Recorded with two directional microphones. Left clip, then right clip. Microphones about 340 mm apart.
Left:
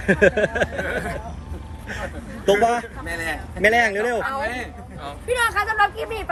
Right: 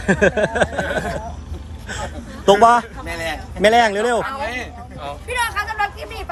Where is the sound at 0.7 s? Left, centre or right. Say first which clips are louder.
Right 4 dB; right.